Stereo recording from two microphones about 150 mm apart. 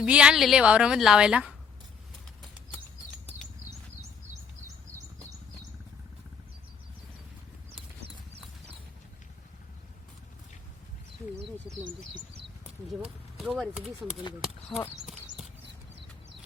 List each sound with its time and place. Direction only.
0.0 s a woman's voice: 5° right (ahead or behind)
7.8 s clip-clop: 40° right (ahead or behind)
12.9 s speech: centre (ahead or behind)